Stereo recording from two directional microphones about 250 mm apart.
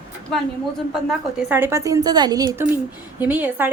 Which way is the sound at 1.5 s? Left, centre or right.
Centre.